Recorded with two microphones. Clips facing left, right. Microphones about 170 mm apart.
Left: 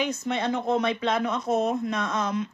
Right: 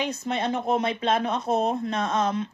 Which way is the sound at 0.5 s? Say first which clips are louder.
Left 1 dB; 25° right (ahead or behind).